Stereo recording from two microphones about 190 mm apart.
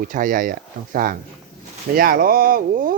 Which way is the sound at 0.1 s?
45° right (ahead or behind).